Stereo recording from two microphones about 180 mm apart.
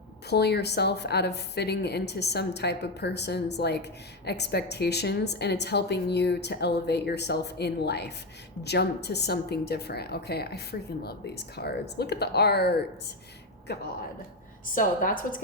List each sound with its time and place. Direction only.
0.3 s a woman's voice: 65° left (ahead or behind)
14.8 s a woman's voice: 50° left (ahead or behind)